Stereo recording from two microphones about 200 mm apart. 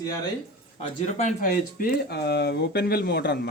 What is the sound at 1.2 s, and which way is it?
Speech, 45° left (ahead or behind).